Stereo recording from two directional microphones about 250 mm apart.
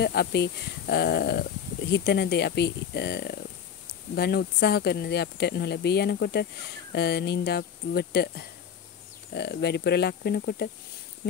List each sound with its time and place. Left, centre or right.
0.0 s speech: left